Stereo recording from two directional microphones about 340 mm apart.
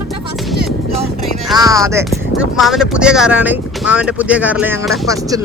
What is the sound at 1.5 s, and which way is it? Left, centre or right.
Speech, centre.